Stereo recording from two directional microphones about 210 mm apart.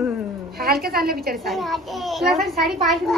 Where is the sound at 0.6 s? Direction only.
45° right (ahead or behind).